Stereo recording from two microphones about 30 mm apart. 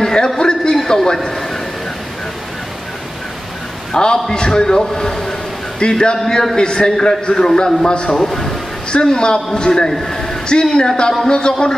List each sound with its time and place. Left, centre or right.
0.0 s a sound: left
0.8 s a man's voice: centre
3.9 s a man's voice: left
5.8 s a man's voice: left
6.1 s a man's voice: centre; by 8.2 s left
8.2 s a man's voice: centre
9.0 s a man's voice: left
9.8 s a man's voice: centre
10.5 s a man's voice: left